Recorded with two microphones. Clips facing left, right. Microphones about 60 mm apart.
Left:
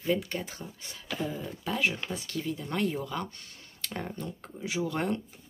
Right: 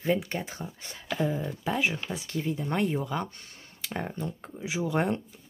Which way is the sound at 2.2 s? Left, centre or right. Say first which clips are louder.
Right 3 dB; right.